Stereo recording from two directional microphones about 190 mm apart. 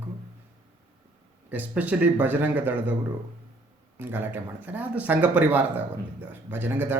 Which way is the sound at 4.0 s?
10° right (ahead or behind).